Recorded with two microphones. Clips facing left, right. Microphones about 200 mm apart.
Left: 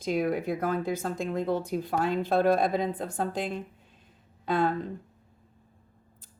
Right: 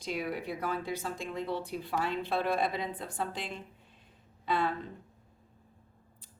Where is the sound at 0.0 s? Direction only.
45° left (ahead or behind).